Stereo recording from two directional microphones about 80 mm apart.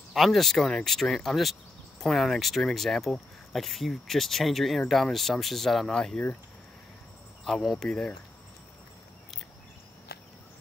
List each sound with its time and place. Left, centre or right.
0.1 s speech: centre
7.4 s speech: centre